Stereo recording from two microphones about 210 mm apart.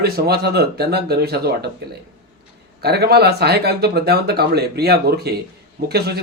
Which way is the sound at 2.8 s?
50° right (ahead or behind).